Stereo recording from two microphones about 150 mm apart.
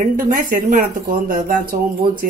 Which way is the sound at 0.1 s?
65° right (ahead or behind).